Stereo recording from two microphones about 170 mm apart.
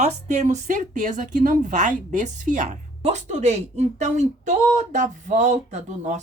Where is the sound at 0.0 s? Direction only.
40° right (ahead or behind).